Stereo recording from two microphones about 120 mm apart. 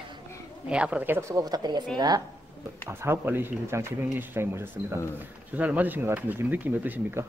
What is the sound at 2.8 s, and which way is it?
Speech, 20° right (ahead or behind).